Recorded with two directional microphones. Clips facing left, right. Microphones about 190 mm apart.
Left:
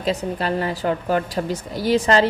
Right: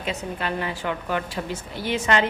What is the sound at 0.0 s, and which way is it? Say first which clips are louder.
Speech: left 6 dB; 35° left (ahead or behind).